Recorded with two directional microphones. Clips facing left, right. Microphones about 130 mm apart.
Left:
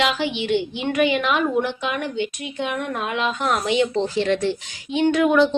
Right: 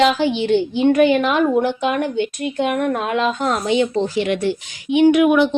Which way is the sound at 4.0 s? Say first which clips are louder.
Right 2 dB; 15° right (ahead or behind).